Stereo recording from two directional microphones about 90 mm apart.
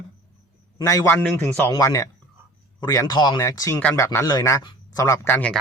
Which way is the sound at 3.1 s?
55° left (ahead or behind).